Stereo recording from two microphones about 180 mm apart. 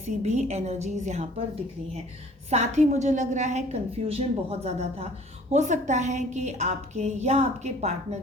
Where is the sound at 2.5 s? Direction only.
40° right (ahead or behind).